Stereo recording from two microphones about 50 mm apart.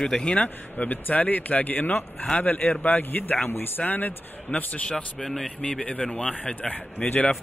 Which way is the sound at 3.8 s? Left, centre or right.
Left.